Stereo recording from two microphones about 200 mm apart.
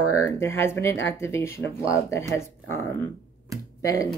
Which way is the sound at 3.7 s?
15° left (ahead or behind).